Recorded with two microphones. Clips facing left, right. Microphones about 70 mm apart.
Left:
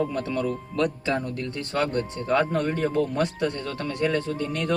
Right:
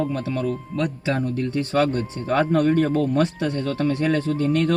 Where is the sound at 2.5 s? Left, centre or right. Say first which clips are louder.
Right 6 dB; right.